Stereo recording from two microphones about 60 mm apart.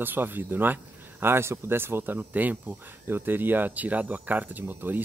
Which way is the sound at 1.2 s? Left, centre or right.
Right.